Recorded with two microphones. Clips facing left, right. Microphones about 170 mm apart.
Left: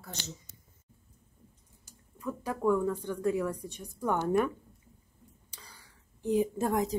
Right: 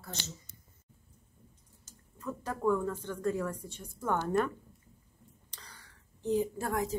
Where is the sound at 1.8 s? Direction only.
10° left (ahead or behind).